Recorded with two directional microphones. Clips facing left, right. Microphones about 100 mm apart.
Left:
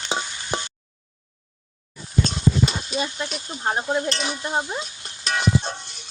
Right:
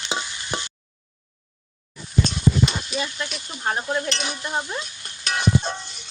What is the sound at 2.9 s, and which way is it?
Stir, 25° left (ahead or behind).